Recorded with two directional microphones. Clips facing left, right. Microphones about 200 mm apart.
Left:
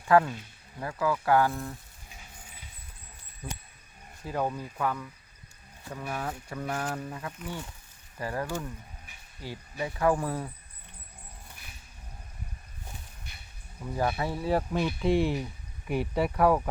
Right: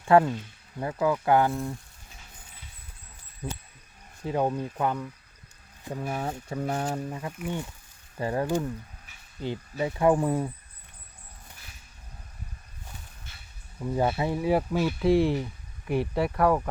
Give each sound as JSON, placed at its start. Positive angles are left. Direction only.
{"t": 0.1, "sound": "speech", "side_deg": -25}
{"t": 4.3, "sound": "speech", "side_deg": -25}
{"t": 8.2, "sound": "speech", "side_deg": -25}
{"t": 13.9, "sound": "speech", "side_deg": -20}